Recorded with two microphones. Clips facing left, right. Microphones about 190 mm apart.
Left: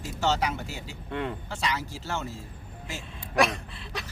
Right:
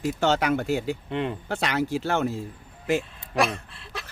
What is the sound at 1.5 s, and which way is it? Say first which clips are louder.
Speech: right 6 dB; 60° right (ahead or behind).